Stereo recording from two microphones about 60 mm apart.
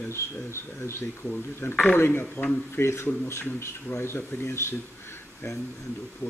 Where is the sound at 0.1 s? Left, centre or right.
Left.